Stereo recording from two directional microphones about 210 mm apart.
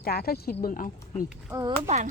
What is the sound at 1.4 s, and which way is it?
Speech, 15° right (ahead or behind).